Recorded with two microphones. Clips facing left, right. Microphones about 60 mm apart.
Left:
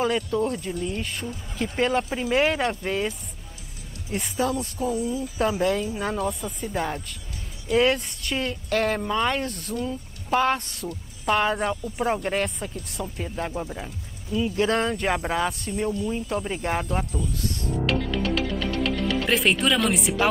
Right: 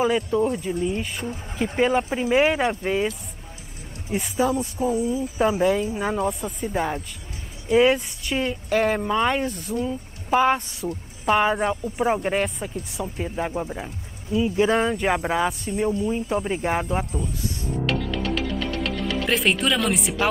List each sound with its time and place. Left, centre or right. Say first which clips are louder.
0.0 s speech: right 3 dB; centre
2.0 s speech: right 3 dB; centre
4.1 s speech: right 3 dB; centre
6.2 s speech: right 3 dB; centre
17.8 s music: left 1 dB; centre